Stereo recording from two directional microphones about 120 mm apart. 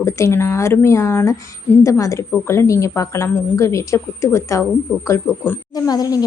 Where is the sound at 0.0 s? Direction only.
25° left (ahead or behind).